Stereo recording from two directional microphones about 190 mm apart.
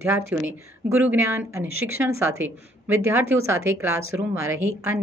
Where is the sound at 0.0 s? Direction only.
10° right (ahead or behind).